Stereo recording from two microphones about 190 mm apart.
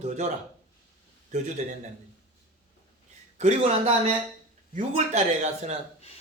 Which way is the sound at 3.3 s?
35° right (ahead or behind).